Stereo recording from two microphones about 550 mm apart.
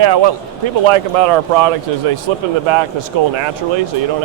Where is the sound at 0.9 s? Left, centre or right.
Right.